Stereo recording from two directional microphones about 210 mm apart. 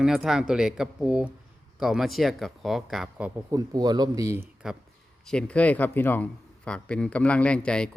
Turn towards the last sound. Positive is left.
turn(degrees=5)  # may be behind; listen again after turning